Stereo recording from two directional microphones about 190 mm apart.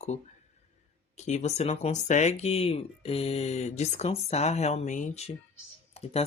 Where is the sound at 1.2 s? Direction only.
35° left (ahead or behind).